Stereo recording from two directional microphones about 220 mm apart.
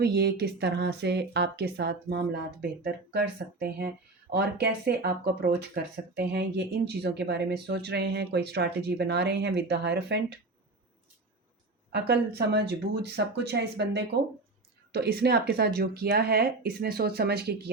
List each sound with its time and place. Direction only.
0.0 s speech: 45° right (ahead or behind)
11.9 s speech: 50° right (ahead or behind)